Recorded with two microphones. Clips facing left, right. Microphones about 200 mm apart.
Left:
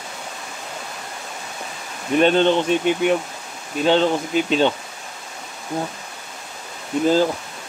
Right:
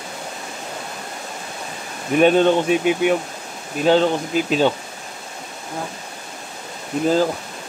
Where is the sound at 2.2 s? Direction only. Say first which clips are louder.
Right 2 dB; 5° right (ahead or behind).